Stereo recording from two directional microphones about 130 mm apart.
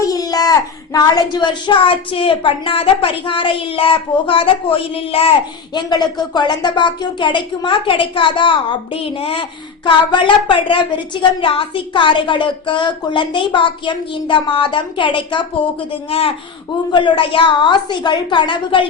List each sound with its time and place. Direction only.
0.0 s a sound: 30° left (ahead or behind)
0.9 s a woman's voice: 35° left (ahead or behind)
5.7 s a woman's voice: 35° left (ahead or behind)
16.9 s speech: 35° left (ahead or behind)